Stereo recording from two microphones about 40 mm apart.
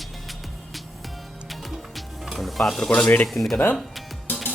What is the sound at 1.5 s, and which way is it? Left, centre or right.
Music, centre.